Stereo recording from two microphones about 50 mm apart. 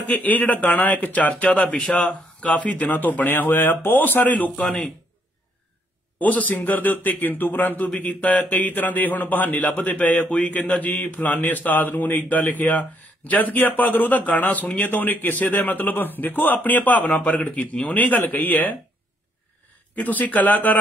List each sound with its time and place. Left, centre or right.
0.0 s a man's voice: left
6.1 s a man's voice: left
20.0 s a man's voice: left